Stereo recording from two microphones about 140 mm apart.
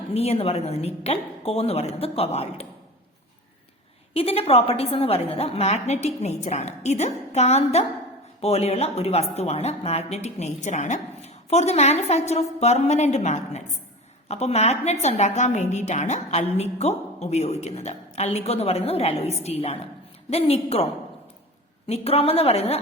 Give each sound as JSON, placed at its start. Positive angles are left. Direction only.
{"t": 0.1, "sound": "a woman's voice", "side_deg": 45}
{"t": 4.1, "sound": "a woman's voice", "side_deg": 45}
{"t": 21.8, "sound": "a woman's voice", "side_deg": 45}